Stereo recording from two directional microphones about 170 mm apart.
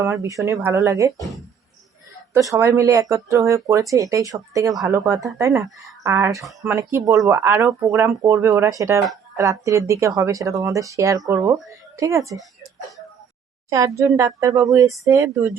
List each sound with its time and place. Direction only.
0.0 s speech: 15° right (ahead or behind)
2.3 s speech: 15° right (ahead or behind)
13.7 s speech: 20° right (ahead or behind)